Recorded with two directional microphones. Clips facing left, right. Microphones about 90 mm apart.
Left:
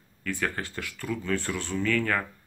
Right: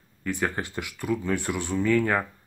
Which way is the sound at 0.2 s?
20° right (ahead or behind).